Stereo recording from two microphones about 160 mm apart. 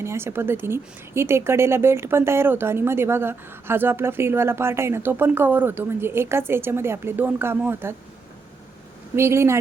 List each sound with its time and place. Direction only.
0.0 s a woman's voice: 15° right (ahead or behind)
9.1 s a woman's voice: 15° right (ahead or behind)